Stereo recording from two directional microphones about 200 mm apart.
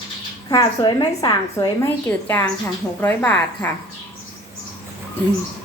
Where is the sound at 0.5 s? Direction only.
20° left (ahead or behind).